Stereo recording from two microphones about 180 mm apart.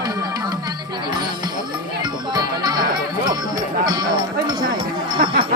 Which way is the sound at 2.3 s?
25° right (ahead or behind).